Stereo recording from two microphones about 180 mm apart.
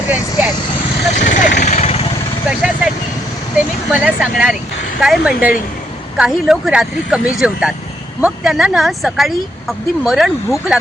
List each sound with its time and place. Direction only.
0.1 s speech: 10° right (ahead or behind)
1.1 s speech: 45° left (ahead or behind)
1.6 s vehicle: 40° left (ahead or behind)
2.6 s speech: 5° right (ahead or behind)